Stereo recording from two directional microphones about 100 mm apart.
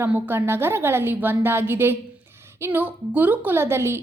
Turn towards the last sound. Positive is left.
turn(degrees=-25)  # may be behind; listen again after turning